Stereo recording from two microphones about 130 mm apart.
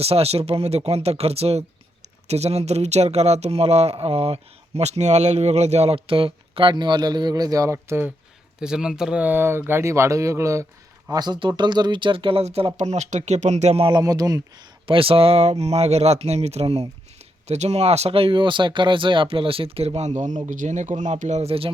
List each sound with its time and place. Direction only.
0.0 s speech: 50° right (ahead or behind); by 8.1 s 20° right (ahead or behind)
8.5 s speech: 5° right (ahead or behind); by 13.8 s 55° right (ahead or behind)
13.8 s speech: 30° right (ahead or behind)
14.8 s speech: 45° right (ahead or behind)